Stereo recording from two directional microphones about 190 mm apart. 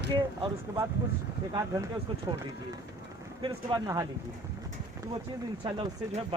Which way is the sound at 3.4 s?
20° right (ahead or behind).